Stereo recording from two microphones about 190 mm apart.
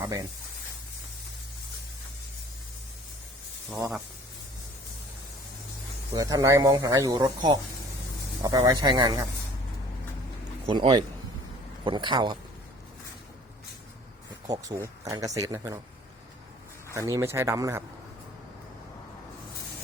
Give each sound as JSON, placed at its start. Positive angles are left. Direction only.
{"t": 0.0, "sound": "speech", "side_deg": -20}
{"t": 6.1, "sound": "speech", "side_deg": -20}
{"t": 10.7, "sound": "speech", "side_deg": -25}
{"t": 14.4, "sound": "speech", "side_deg": -15}
{"t": 16.9, "sound": "speech", "side_deg": -15}